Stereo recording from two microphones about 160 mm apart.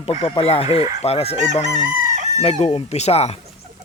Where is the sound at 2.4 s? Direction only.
40° left (ahead or behind).